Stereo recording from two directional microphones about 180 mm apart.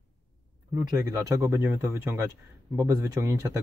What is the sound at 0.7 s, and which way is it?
Speech, 20° right (ahead or behind).